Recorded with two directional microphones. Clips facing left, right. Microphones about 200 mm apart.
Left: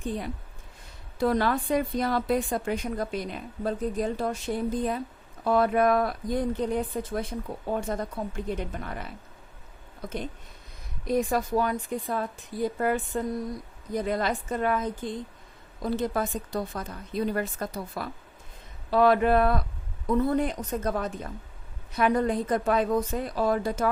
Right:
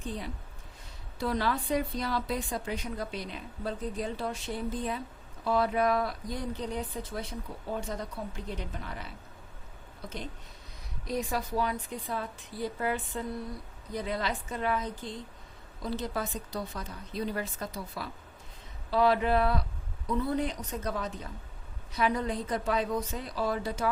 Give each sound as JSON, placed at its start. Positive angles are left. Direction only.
{"t": 1.2, "sound": "a woman's voice", "side_deg": 50}
{"t": 11.0, "sound": "a woman's voice", "side_deg": 50}